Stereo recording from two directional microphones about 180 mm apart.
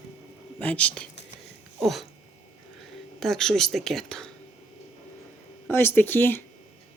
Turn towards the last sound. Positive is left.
turn(degrees=10)  # may be behind; listen again after turning